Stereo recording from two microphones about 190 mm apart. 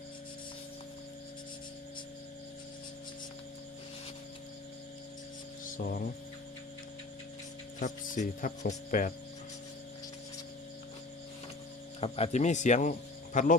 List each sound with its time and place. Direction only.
5.7 s hum: 50° left (ahead or behind)
7.8 s speech: 40° left (ahead or behind)
11.9 s speech: 35° left (ahead or behind)